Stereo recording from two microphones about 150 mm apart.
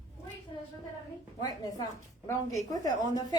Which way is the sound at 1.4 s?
25° left (ahead or behind).